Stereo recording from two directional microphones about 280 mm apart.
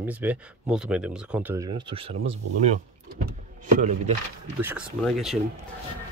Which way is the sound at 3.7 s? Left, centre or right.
Right.